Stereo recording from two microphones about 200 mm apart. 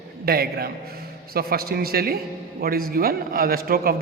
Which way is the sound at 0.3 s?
50° right (ahead or behind).